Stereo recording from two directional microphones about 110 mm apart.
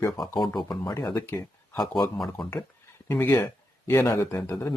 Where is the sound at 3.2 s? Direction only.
20° left (ahead or behind).